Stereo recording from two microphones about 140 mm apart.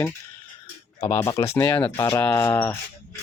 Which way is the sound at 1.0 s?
25° left (ahead or behind).